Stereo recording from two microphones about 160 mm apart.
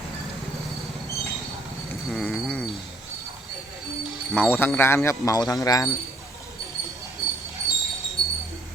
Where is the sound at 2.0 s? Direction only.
5° left (ahead or behind).